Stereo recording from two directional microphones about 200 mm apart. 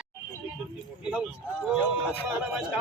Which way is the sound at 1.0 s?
5° right (ahead or behind).